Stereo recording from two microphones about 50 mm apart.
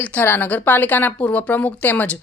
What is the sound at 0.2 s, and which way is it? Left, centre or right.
Speech, left.